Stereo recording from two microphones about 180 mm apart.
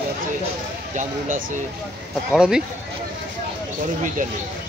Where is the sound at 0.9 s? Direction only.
45° right (ahead or behind).